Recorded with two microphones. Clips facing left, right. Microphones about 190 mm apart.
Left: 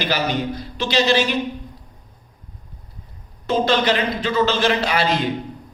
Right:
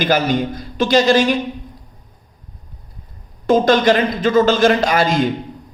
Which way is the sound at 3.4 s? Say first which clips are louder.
Right 6 dB; 50° right (ahead or behind).